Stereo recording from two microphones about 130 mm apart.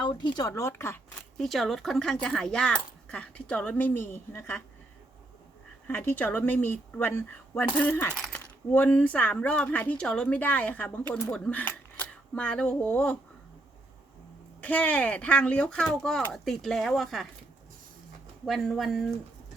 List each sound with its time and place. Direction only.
0.0 s speech: 35° left (ahead or behind); by 1.0 s 15° left (ahead or behind)
1.4 s speech: centre (ahead or behind); by 4.6 s 15° left (ahead or behind)
5.9 s speech: 15° left (ahead or behind)
14.6 s speech: 10° left (ahead or behind)
18.4 s speech: centre (ahead or behind)